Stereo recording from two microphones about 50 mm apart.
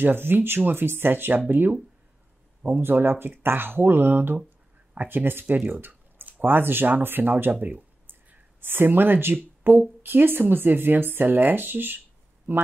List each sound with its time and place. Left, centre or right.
0.0 s speech: right